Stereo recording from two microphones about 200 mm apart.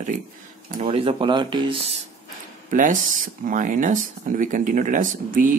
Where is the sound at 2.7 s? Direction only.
40° right (ahead or behind).